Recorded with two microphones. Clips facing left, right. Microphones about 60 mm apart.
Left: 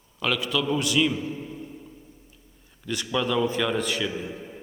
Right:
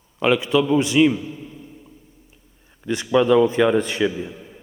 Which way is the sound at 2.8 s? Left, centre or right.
Right.